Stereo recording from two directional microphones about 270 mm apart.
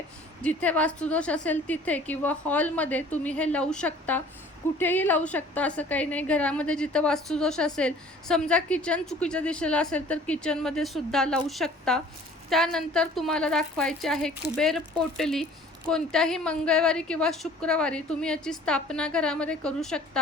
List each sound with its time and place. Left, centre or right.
0.4 s a woman's voice: centre